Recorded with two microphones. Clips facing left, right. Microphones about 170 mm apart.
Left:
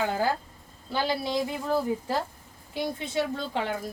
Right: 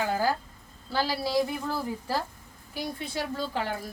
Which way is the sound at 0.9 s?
20° left (ahead or behind).